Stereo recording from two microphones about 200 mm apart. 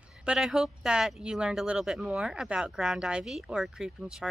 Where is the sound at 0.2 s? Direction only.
5° right (ahead or behind).